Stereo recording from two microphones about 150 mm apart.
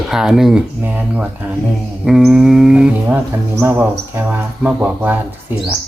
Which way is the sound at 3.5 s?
15° right (ahead or behind).